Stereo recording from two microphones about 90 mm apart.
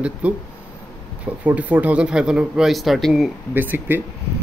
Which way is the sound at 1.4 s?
15° right (ahead or behind).